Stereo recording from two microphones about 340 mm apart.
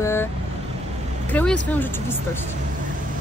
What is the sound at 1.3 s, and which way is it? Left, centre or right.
Speech, centre.